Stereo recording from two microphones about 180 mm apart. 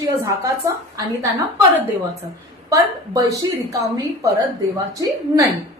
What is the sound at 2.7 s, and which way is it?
Speech, 20° right (ahead or behind).